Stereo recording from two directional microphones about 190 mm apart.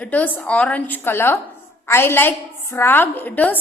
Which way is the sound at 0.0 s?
10° left (ahead or behind).